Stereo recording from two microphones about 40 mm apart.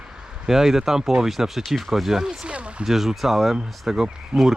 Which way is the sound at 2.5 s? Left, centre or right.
Right.